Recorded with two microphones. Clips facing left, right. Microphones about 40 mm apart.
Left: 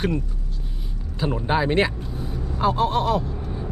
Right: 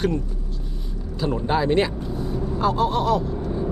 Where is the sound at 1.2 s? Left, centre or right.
Centre.